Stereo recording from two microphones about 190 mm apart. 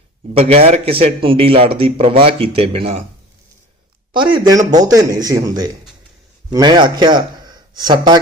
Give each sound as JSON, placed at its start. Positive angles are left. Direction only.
{"t": 0.3, "sound": "a man's voice", "side_deg": -30}
{"t": 4.1, "sound": "a man's voice", "side_deg": -25}